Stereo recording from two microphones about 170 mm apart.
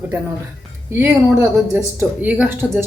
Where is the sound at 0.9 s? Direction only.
15° right (ahead or behind).